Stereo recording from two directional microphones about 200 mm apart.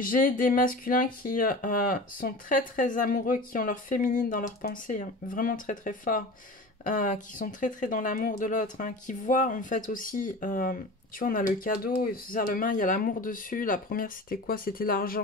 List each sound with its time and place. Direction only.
0.0 s speech: 45° left (ahead or behind)